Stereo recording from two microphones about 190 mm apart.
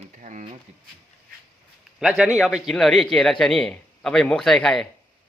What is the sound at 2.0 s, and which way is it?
A man's voice, 5° right (ahead or behind).